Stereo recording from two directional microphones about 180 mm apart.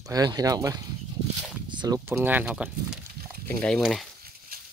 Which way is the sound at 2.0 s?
10° right (ahead or behind).